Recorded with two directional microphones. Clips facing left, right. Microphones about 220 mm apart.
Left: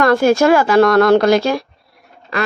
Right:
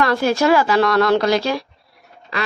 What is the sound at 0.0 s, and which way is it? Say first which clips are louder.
A woman's voice: left 5 dB; 50° left (ahead or behind).